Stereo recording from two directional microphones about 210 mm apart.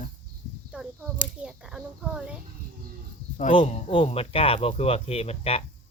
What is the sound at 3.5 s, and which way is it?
Speech, 30° left (ahead or behind).